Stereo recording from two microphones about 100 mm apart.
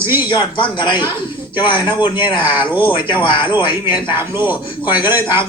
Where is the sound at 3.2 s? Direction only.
55° left (ahead or behind).